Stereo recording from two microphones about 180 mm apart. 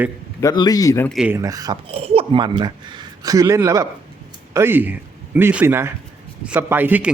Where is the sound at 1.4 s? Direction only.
20° right (ahead or behind).